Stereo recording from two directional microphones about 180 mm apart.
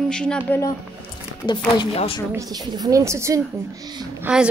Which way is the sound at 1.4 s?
25° left (ahead or behind).